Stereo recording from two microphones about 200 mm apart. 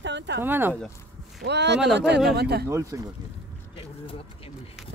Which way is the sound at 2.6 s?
15° right (ahead or behind).